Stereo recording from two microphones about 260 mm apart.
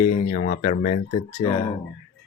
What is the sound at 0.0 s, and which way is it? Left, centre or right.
Speech, left.